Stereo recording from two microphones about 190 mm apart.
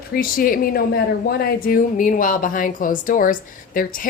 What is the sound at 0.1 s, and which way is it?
Speech, 50° left (ahead or behind).